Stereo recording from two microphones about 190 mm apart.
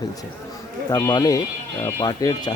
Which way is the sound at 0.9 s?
20° left (ahead or behind).